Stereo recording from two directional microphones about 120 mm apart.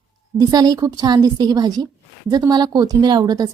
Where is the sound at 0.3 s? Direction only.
35° right (ahead or behind).